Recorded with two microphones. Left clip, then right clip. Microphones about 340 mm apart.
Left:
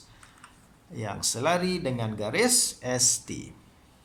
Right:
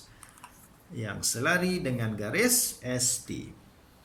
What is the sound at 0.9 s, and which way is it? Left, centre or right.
Speech, centre.